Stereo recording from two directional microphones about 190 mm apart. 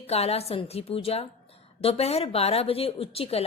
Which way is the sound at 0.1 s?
35° left (ahead or behind).